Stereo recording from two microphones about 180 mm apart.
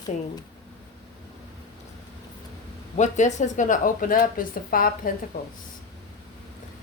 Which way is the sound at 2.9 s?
40° left (ahead or behind).